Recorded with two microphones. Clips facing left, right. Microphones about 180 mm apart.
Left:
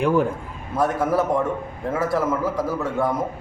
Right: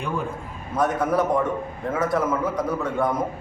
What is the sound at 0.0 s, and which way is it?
Speech, 90° left.